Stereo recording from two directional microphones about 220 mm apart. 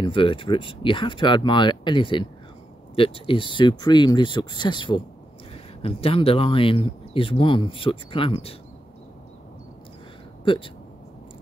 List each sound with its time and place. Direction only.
0.0 s speech: 25° left (ahead or behind)
10.4 s speech: 20° left (ahead or behind)